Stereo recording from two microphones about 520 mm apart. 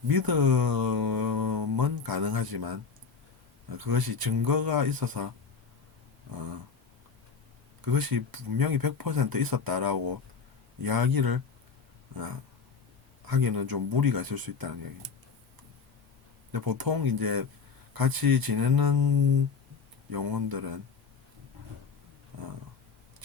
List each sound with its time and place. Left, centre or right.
0.1 s speech: right
6.3 s speech: right
7.8 s speech: right
12.1 s a sound: right
13.2 s speech: right
16.5 s a man's voice: right
22.3 s a sound: right